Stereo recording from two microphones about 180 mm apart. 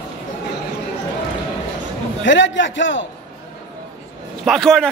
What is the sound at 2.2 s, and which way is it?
Speech, 90° left.